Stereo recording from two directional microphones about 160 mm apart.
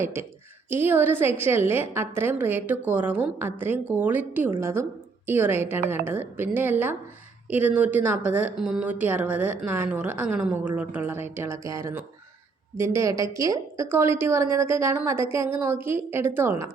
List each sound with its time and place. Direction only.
0.0 s a woman's voice: 15° right (ahead or behind)